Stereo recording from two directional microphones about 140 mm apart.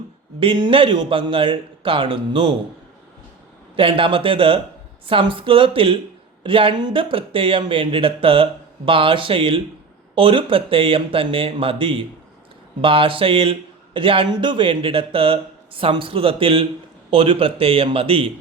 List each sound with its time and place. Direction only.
0.3 s a man's voice: 40° right (ahead or behind)
3.8 s a man's voice: 40° right (ahead or behind)